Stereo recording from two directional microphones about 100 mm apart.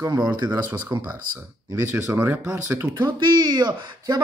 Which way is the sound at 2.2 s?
15° right (ahead or behind).